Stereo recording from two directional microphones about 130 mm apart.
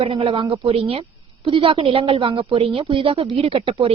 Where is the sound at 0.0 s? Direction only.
45° right (ahead or behind).